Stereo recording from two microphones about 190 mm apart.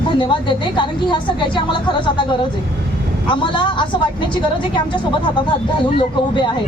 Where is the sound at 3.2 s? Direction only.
25° left (ahead or behind).